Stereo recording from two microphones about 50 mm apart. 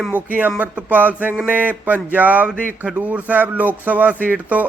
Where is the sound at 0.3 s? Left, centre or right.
Right.